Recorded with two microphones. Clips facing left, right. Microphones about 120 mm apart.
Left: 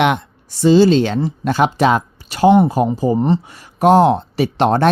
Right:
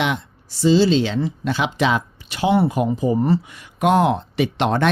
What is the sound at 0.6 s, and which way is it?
Speech, 50° left (ahead or behind).